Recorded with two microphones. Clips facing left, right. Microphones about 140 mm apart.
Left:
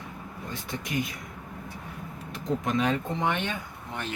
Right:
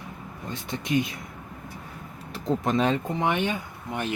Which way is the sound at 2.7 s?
30° right (ahead or behind).